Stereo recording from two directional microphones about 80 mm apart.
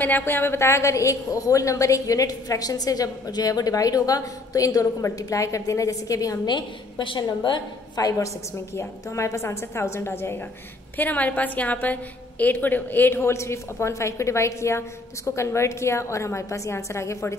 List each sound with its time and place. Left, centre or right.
0.0 s a woman's voice: left
6.4 s a woman's voice: left
7.9 s a woman's voice: left
8.7 s a woman's voice: left
11.0 s a woman's voice: left